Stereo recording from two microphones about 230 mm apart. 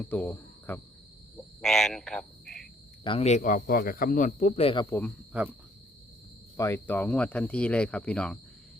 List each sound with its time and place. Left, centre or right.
0.0 s cricket: centre
1.6 s speech: centre
3.0 s speech: left
5.3 s speech: centre
6.6 s speech: centre